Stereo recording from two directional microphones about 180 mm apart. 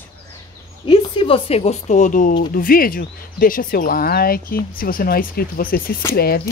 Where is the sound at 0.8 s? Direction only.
30° left (ahead or behind); by 6.4 s 60° left (ahead or behind).